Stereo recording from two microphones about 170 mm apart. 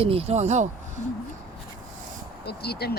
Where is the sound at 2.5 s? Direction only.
70° left (ahead or behind).